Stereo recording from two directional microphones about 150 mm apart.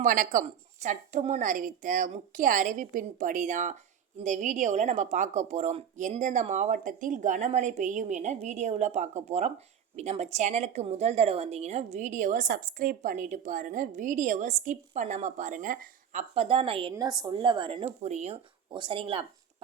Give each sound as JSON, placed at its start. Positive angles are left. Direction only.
{"t": 0.0, "sound": "a woman's voice", "side_deg": -60}
{"t": 16.3, "sound": "a woman's voice", "side_deg": -40}
{"t": 16.9, "sound": "a woman's voice", "side_deg": -25}
{"t": 17.8, "sound": "a woman's voice", "side_deg": -50}
{"t": 18.7, "sound": "a woman's voice", "side_deg": -35}